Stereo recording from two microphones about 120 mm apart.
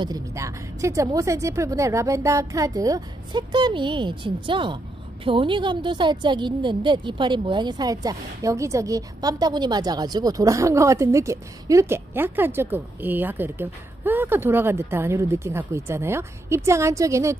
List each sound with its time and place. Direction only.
0.3 s a woman's voice: 25° right (ahead or behind)